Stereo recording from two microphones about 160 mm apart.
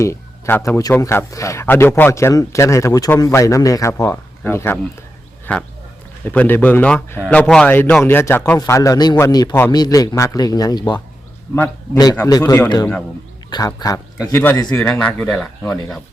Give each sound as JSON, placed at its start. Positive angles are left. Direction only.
{"t": 0.0, "sound": "a man's voice", "side_deg": 15}
{"t": 12.1, "sound": "a man's voice", "side_deg": 15}
{"t": 14.7, "sound": "speech", "side_deg": 5}